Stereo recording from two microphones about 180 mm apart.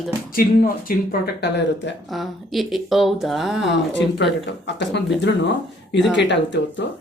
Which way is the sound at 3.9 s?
80° left.